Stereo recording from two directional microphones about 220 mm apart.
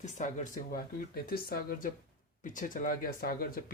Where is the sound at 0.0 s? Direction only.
35° left (ahead or behind).